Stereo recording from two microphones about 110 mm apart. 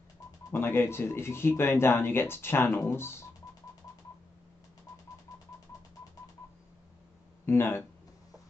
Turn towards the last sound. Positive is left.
turn(degrees=20)  # may be behind; listen again after turning